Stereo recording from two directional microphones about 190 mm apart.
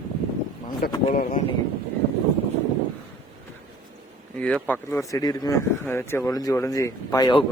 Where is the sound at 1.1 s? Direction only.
45° left (ahead or behind).